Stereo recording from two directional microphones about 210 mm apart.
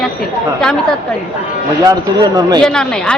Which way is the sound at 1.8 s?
15° right (ahead or behind).